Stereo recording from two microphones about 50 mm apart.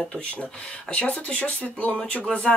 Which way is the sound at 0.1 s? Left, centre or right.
Left.